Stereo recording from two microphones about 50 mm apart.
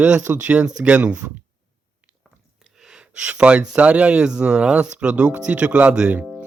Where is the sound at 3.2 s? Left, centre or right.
Right.